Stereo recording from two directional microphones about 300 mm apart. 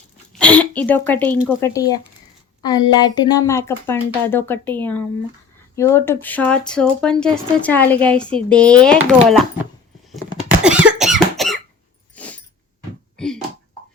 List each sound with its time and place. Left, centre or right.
0.3 s speech: centre
10.6 s cough: centre
12.1 s dog: centre
13.1 s a sound: centre